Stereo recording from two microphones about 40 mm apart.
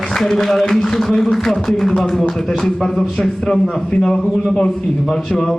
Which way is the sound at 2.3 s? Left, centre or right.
Centre.